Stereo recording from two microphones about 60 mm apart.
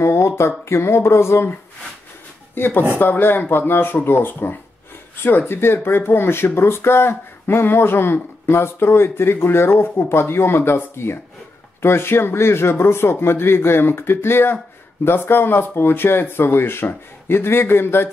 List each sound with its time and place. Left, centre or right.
0.0 s a sound: left
0.4 s speech: left
2.5 s speech: left